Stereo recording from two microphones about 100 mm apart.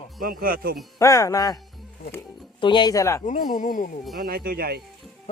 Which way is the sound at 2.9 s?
30° left (ahead or behind).